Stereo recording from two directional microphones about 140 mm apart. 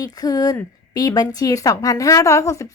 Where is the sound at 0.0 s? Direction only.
25° left (ahead or behind).